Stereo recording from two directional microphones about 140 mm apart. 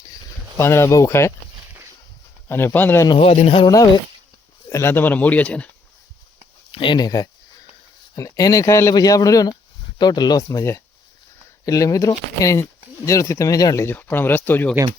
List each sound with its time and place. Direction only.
0.1 s a sound: 20° left (ahead or behind)
2.5 s speech: 15° left (ahead or behind)
3.2 s a man's voice: 45° left (ahead or behind)
4.7 s speech: 15° left (ahead or behind)
6.7 s speech: 40° left (ahead or behind); by 14.8 s 15° left (ahead or behind)